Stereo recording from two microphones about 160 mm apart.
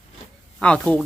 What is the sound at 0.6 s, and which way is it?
Speech, 5° left (ahead or behind).